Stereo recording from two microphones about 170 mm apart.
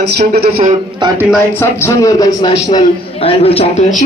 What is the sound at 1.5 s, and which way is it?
Speech, 15° left (ahead or behind).